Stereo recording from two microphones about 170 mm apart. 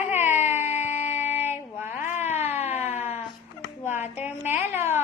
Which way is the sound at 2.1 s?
40° left (ahead or behind).